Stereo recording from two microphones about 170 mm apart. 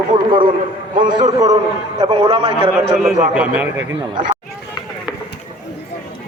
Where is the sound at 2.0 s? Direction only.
35° right (ahead or behind).